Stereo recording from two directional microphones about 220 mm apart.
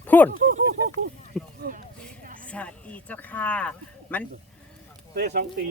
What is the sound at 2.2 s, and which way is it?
Vehicle, 40° right (ahead or behind).